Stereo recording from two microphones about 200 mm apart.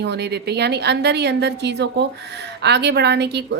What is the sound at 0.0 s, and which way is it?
Speech, 55° right (ahead or behind).